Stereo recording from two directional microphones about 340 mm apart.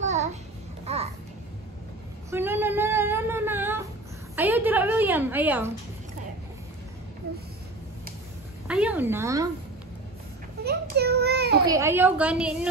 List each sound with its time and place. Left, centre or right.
0.0 s babbling: right
2.3 s child singing: centre
4.4 s a sound: centre
8.6 s speech: centre
10.6 s child singing: right
11.6 s a woman's voice: centre